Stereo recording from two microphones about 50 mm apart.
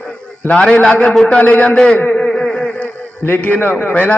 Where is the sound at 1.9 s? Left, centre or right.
Left.